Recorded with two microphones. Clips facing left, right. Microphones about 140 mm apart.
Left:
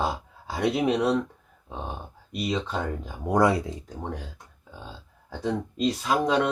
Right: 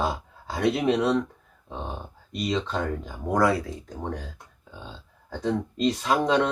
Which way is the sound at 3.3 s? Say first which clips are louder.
Left 1 dB; 20° left (ahead or behind).